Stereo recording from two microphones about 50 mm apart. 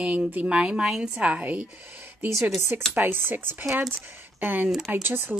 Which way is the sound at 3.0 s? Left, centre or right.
Right.